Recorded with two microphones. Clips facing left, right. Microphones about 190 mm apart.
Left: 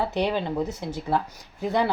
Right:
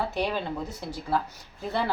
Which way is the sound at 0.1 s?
20° left (ahead or behind).